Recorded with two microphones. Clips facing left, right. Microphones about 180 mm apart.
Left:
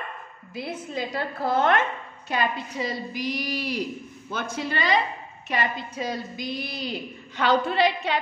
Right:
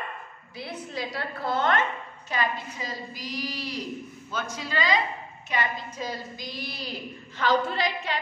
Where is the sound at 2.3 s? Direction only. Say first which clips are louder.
Left 3 dB; 70° left (ahead or behind).